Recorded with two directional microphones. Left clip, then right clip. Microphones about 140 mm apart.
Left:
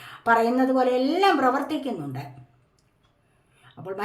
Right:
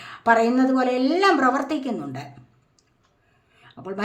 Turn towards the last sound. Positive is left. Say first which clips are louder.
# right 1 dB
turn(degrees=-25)  # may be behind; listen again after turning